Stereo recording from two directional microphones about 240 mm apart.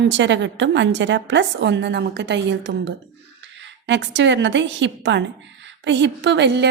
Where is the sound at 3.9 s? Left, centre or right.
Right.